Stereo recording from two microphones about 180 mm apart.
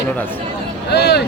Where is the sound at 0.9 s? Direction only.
70° left (ahead or behind).